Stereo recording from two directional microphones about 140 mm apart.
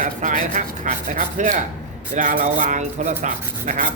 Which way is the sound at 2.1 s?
80° right.